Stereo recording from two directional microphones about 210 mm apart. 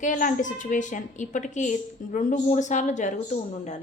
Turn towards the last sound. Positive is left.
turn(degrees=35)  # may be behind; listen again after turning